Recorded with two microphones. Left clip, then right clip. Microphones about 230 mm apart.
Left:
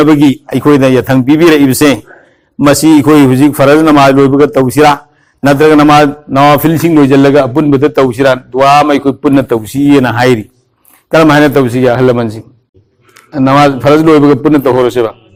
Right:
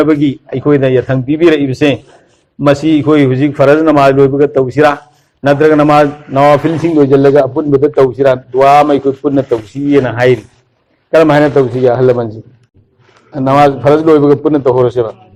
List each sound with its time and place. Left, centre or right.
0.0 s a man's voice: left